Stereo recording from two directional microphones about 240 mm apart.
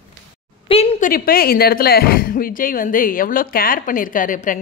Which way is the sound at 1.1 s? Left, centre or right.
Left.